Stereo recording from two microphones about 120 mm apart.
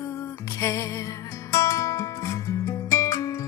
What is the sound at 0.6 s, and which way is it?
Music, 25° left (ahead or behind).